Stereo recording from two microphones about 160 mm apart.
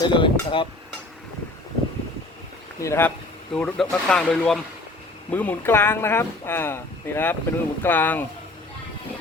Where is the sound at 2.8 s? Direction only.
15° left (ahead or behind).